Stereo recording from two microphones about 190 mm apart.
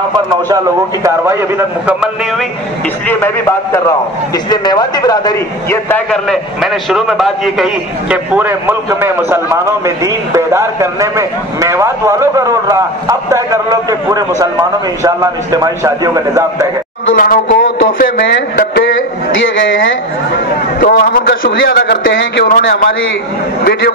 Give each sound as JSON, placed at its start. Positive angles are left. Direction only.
{"t": 1.0, "sound": "a man's voice", "side_deg": -15}
{"t": 3.1, "sound": "a man's voice", "side_deg": 10}
{"t": 4.5, "sound": "a man's voice", "side_deg": 20}
{"t": 17.1, "sound": "a man's voice", "side_deg": 45}
{"t": 19.6, "sound": "a man's voice", "side_deg": 85}
{"t": 20.8, "sound": "a man's voice", "side_deg": 50}
{"t": 22.1, "sound": "speech", "side_deg": 65}
{"t": 22.5, "sound": "a man's voice", "side_deg": 45}
{"t": 23.6, "sound": "speech", "side_deg": 60}